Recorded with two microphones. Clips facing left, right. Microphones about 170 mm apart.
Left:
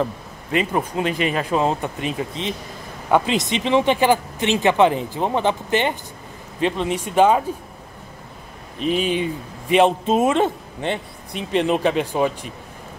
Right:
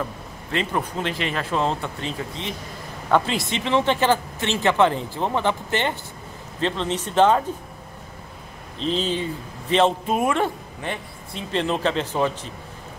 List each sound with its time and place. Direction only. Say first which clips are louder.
0.5 s speech: left 4 dB; 10° left (ahead or behind)
8.7 s speech: left 3 dB; 15° left (ahead or behind)